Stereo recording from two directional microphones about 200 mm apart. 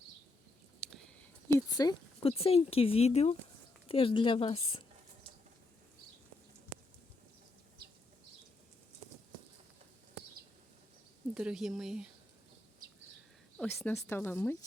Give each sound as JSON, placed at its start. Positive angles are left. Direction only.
{"t": 1.5, "sound": "speech", "side_deg": 15}
{"t": 11.3, "sound": "speech", "side_deg": -5}
{"t": 13.6, "sound": "a woman's voice", "side_deg": 10}